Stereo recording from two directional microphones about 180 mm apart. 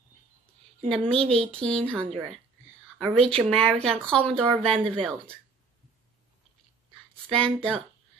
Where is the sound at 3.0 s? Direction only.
5° left (ahead or behind).